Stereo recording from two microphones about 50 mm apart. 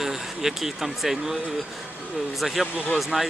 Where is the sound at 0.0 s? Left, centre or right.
Centre.